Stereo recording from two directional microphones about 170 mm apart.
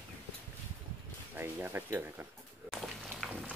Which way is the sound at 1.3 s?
10° right (ahead or behind).